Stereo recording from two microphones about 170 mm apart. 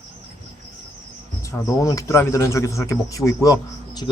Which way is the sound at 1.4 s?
20° left (ahead or behind).